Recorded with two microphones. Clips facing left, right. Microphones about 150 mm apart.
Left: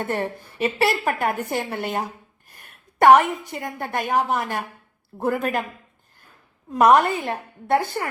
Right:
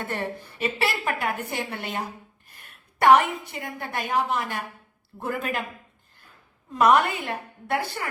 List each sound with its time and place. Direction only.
0.0 s a woman's voice: 50° left (ahead or behind)
6.7 s a woman's voice: 45° left (ahead or behind)